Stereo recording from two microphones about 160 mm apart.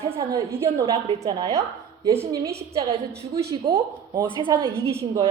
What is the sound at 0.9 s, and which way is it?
Speech, 35° right (ahead or behind).